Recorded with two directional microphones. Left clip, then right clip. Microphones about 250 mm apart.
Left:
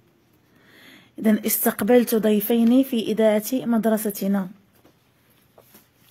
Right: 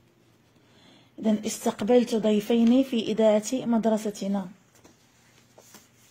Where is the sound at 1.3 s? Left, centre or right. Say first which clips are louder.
Left 4 dB; left.